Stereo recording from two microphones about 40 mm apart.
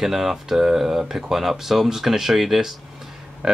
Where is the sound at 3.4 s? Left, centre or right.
Centre.